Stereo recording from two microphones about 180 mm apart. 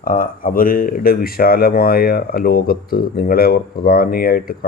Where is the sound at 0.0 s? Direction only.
50° left (ahead or behind).